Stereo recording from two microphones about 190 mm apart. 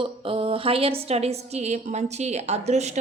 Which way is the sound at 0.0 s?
30° right (ahead or behind).